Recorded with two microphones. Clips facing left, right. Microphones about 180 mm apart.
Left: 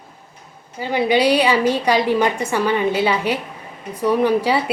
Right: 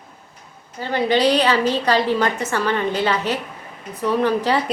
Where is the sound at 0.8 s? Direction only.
10° left (ahead or behind).